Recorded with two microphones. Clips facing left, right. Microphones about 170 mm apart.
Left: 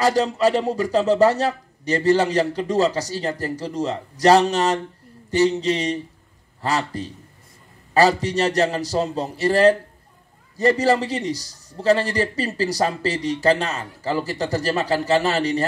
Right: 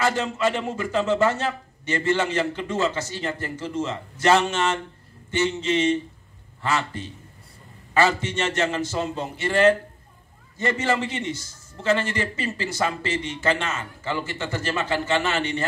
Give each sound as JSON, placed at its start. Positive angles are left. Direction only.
{"t": 0.0, "sound": "a man's voice", "side_deg": 35}